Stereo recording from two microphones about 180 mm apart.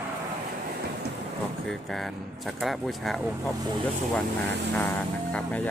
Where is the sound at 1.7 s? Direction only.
Centre (ahead or behind).